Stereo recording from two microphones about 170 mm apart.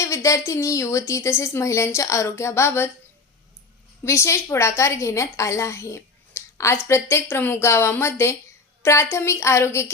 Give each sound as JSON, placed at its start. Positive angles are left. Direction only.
{"t": 0.0, "sound": "a woman's voice", "side_deg": 20}
{"t": 4.0, "sound": "a woman's voice", "side_deg": 15}